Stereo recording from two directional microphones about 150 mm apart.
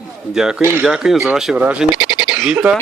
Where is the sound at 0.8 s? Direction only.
5° right (ahead or behind).